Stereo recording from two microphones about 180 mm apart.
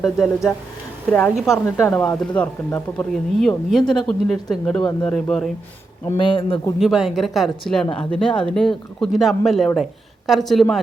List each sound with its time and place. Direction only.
0.0 s speech: centre (ahead or behind)
1.6 s speech: 10° left (ahead or behind)
4.8 s a man's voice: 25° left (ahead or behind)
5.0 s speech: 5° left (ahead or behind)
6.1 s a man's voice: 30° left (ahead or behind)
6.7 s speech: centre (ahead or behind)